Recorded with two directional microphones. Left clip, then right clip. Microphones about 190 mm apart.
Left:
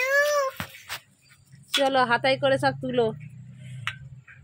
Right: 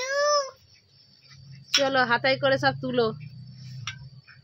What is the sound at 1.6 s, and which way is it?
A woman's voice, 10° left (ahead or behind).